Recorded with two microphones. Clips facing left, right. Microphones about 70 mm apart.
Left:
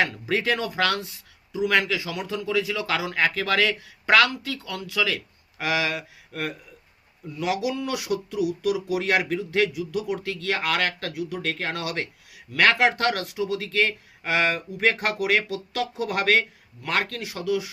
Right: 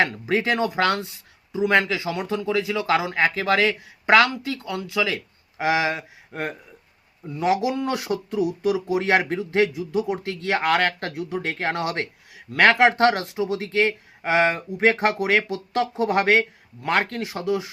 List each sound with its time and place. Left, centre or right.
0.0 s speech: right